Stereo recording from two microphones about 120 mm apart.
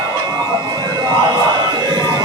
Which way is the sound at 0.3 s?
30° right (ahead or behind).